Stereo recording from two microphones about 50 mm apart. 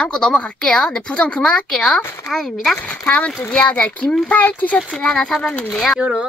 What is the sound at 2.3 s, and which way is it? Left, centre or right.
Speech, centre.